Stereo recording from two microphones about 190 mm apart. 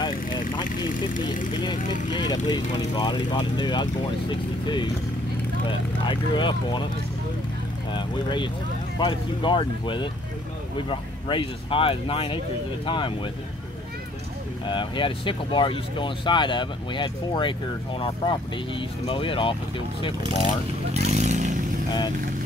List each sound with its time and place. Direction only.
2.0 s speech: 20° left (ahead or behind)
7.9 s speech: 25° left (ahead or behind)
14.7 s speech: 25° left (ahead or behind)
20.9 s vehicle: 35° right (ahead or behind)